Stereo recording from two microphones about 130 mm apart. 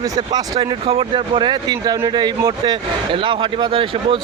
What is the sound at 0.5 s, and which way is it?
Speech, 45° right (ahead or behind).